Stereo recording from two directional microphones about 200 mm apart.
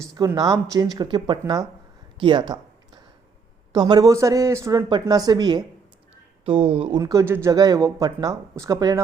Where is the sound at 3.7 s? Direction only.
20° right (ahead or behind).